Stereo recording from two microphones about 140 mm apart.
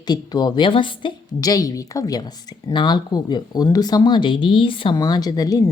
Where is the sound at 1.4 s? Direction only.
25° left (ahead or behind).